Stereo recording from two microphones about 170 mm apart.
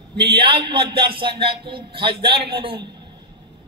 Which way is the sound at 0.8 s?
65° right (ahead or behind).